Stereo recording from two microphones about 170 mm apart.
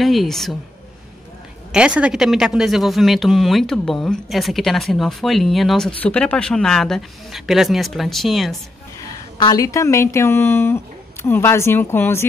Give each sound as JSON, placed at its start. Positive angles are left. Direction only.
{"t": 0.0, "sound": "speech", "side_deg": 0}
{"t": 1.7, "sound": "speech", "side_deg": -5}
{"t": 9.4, "sound": "speech", "side_deg": 20}